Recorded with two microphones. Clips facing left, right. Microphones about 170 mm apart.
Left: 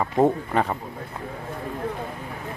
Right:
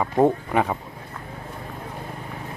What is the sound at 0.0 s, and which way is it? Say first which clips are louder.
Speech: right 1 dB; 5° right (ahead or behind).